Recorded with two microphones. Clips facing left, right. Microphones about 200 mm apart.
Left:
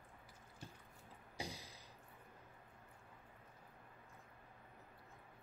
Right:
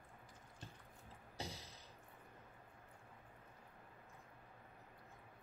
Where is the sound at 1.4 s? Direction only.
10° left (ahead or behind).